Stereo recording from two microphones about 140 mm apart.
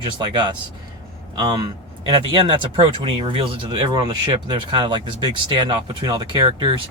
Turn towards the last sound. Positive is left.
turn(degrees=-35)  # may be behind; listen again after turning